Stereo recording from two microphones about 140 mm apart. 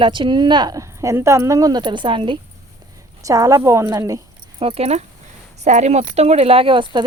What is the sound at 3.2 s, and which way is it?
A woman's voice, 25° right (ahead or behind).